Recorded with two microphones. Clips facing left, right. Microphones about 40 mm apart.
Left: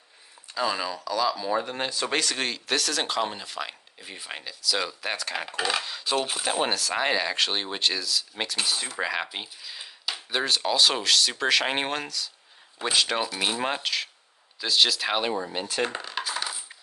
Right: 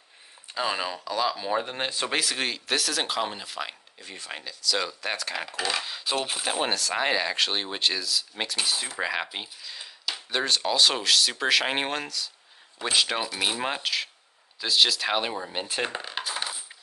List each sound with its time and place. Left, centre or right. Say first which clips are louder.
0.5 s speech: left 1 dB; right
2.0 s speech: left 1 dB; centre
4.0 s speech: even; centre
15.8 s a sound: left 3 dB; centre